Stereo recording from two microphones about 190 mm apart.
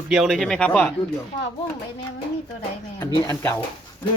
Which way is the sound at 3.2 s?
15° left (ahead or behind).